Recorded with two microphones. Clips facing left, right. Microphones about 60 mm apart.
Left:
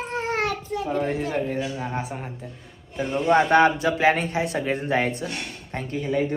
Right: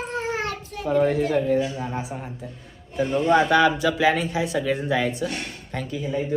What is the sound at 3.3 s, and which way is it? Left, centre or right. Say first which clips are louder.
Speech: left 1 dB; left.